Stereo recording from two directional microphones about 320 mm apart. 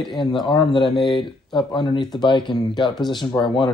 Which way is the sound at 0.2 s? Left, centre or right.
Centre.